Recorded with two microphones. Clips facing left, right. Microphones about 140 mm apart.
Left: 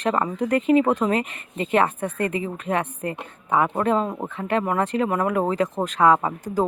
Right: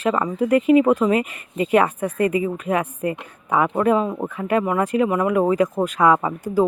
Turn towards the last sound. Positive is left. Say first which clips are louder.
# right 3 dB
turn(degrees=-10)  # may be behind; listen again after turning